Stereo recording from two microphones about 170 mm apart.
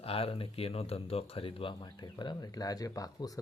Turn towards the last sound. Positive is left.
turn(degrees=20)  # may be behind; listen again after turning